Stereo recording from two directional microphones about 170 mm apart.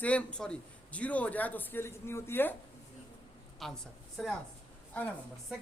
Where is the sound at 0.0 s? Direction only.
10° left (ahead or behind).